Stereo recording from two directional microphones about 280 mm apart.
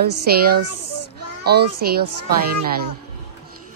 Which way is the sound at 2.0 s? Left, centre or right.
Right.